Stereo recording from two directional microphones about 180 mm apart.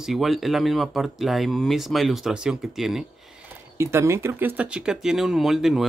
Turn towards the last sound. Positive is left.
turn(degrees=0)  # may be behind; listen again after turning